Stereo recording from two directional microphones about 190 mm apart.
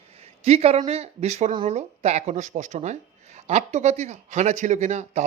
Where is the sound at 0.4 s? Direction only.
35° right (ahead or behind).